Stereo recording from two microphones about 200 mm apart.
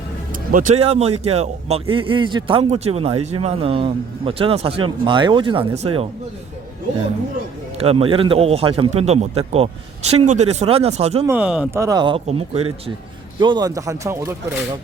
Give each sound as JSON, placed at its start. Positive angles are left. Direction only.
{"t": 0.8, "sound": "a man's voice", "side_deg": -30}
{"t": 7.8, "sound": "a man's voice", "side_deg": -30}
{"t": 11.3, "sound": "speech", "side_deg": -5}